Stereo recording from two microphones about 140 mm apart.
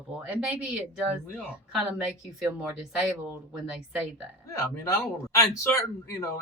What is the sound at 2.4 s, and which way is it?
Speech, centre (ahead or behind).